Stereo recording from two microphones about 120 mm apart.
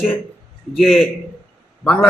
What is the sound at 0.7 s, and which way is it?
Speech, centre (ahead or behind).